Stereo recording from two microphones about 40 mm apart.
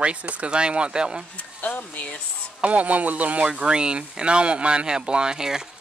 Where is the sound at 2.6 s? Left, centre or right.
Right.